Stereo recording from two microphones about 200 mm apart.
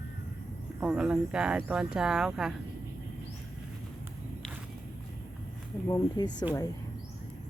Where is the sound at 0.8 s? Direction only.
5° right (ahead or behind).